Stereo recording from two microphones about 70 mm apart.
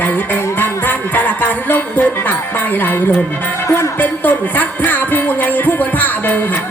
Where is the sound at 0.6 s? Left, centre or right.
Left.